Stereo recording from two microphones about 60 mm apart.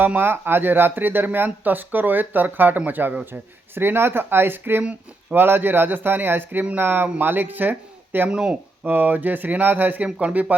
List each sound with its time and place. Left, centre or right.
0.0 s speech: right
8.3 s speech: centre
8.8 s speech: right